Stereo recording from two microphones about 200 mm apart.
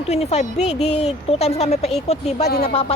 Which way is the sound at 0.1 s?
35° left (ahead or behind).